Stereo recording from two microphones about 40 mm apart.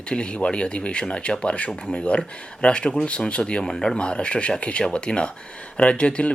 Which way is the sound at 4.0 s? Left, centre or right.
Left.